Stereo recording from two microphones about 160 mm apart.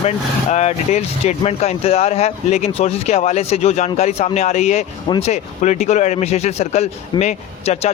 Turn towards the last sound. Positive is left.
turn(degrees=45)  # may be behind; listen again after turning